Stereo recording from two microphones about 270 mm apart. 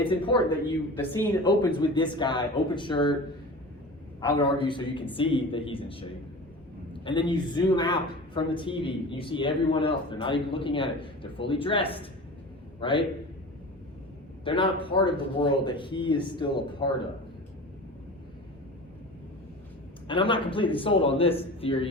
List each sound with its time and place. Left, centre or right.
0.0 s a woman's voice: centre
0.9 s speech: centre
4.4 s a woman's voice: centre
14.4 s speech: centre
20.1 s a woman's voice: centre